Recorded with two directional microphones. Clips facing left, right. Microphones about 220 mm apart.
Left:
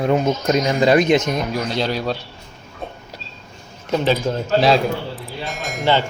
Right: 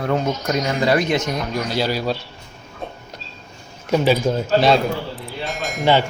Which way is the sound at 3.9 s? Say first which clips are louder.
Right 2 dB; 10° right (ahead or behind).